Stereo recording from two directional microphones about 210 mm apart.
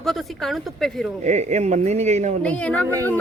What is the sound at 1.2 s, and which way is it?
Speech, 35° right (ahead or behind).